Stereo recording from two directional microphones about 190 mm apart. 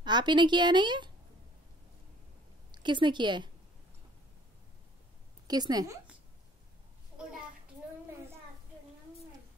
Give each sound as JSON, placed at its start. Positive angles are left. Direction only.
{"t": 0.0, "sound": "a woman's voice", "side_deg": -25}
{"t": 2.7, "sound": "a woman's voice", "side_deg": -25}
{"t": 5.5, "sound": "a woman's voice", "side_deg": -20}